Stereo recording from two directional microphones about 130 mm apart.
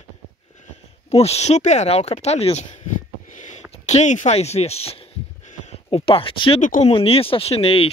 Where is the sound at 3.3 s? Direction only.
75° left (ahead or behind).